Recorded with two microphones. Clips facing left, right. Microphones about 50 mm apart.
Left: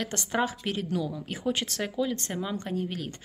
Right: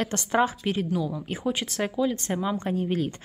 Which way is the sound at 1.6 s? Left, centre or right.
Right.